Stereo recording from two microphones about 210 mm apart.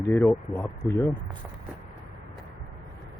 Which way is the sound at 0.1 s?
10° left (ahead or behind).